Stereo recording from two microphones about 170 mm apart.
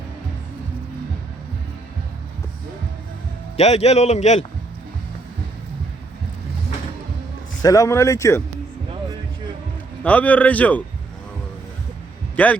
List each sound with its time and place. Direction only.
3.6 s a man's voice: 40° left (ahead or behind)
7.6 s a man's voice: 20° left (ahead or behind)
10.0 s a man's voice: 10° left (ahead or behind)
12.4 s a man's voice: 10° left (ahead or behind)